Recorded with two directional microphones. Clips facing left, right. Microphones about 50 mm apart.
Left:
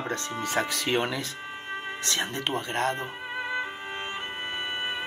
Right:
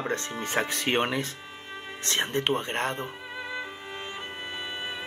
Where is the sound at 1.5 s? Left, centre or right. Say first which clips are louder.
Left 5 dB; left.